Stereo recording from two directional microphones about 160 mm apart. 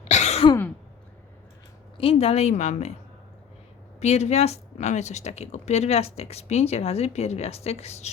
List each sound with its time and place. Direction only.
0.0 s throat clearing: 45° left (ahead or behind)
2.0 s speech: 35° left (ahead or behind)
4.0 s speech: 40° left (ahead or behind)